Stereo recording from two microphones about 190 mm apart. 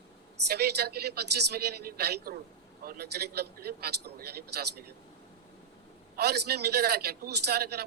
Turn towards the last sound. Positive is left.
turn(degrees=-55)  # may be behind; listen again after turning